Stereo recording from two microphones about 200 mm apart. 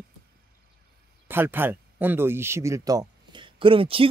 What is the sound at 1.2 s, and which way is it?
Speech, 10° right (ahead or behind).